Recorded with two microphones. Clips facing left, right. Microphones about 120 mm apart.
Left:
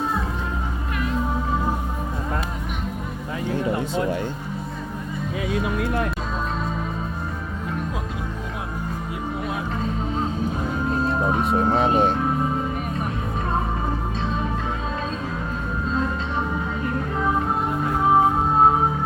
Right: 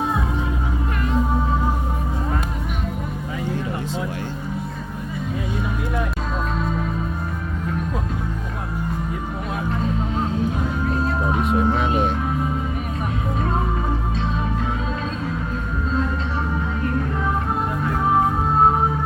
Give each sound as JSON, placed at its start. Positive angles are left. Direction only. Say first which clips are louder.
{"t": 11.3, "sound": "music", "louder": "right 2 dB", "side_deg": 35}